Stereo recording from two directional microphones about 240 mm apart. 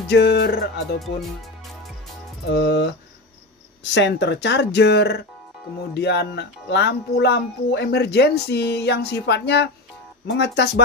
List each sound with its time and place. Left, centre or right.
0.1 s speech: left
2.4 s speech: left
3.9 s speech: left